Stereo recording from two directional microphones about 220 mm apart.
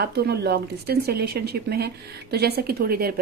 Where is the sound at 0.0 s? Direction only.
45° right (ahead or behind).